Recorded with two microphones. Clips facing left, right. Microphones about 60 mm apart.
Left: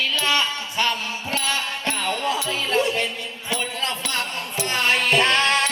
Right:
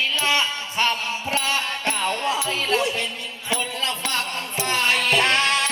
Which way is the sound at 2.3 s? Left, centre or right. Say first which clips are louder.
Even; left.